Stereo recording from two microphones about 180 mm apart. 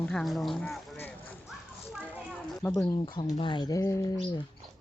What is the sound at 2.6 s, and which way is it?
Speech, 20° left (ahead or behind).